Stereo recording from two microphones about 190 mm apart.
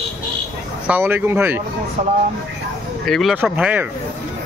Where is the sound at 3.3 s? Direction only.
10° right (ahead or behind).